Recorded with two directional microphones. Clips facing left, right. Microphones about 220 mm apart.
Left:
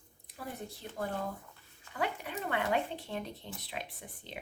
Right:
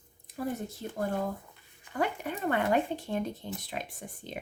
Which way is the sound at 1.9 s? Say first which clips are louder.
Right 4 dB; 45° right (ahead or behind).